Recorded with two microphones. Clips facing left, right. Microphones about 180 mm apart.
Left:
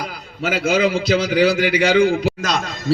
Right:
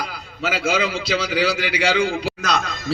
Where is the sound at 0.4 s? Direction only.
50° left (ahead or behind).